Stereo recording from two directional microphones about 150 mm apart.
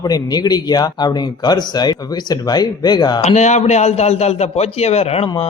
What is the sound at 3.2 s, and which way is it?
A man's voice, 50° left (ahead or behind).